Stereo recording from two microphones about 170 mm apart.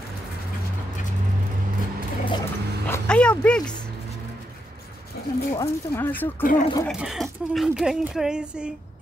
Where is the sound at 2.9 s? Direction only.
5° left (ahead or behind).